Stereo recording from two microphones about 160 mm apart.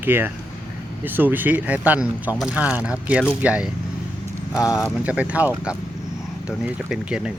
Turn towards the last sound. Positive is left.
turn(degrees=-5)  # may be behind; listen again after turning